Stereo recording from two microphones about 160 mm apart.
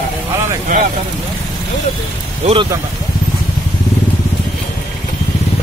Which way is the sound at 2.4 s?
35° right (ahead or behind).